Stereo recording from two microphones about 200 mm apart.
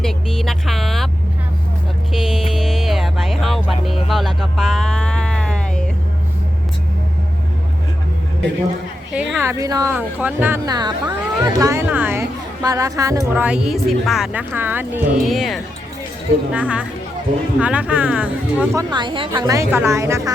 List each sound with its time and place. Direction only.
0.0 s vehicle: centre (ahead or behind)
2.1 s music: centre (ahead or behind)
9.1 s speech: 15° right (ahead or behind)
18.8 s speech: 20° right (ahead or behind)